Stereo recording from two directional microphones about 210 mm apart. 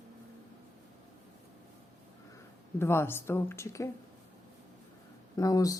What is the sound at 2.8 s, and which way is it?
Speech, 10° left (ahead or behind).